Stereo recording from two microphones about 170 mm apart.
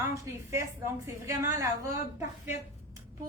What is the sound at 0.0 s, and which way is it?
A woman's voice, 15° right (ahead or behind).